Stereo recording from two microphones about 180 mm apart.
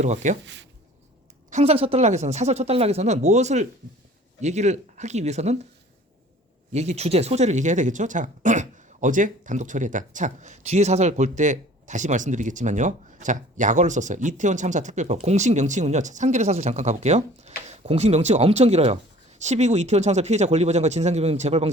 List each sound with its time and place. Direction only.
0.0 s speech: 40° right (ahead or behind)
0.4 s speech: 85° right
1.5 s speech: 40° right (ahead or behind)
6.7 s speech: 35° right (ahead or behind)